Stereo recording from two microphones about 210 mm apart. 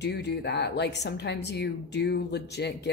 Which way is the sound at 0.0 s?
55° left (ahead or behind).